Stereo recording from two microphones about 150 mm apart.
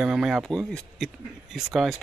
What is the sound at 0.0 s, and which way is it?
Speech, 5° right (ahead or behind).